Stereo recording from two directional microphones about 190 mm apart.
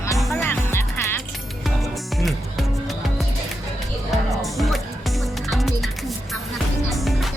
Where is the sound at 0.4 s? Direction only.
10° left (ahead or behind).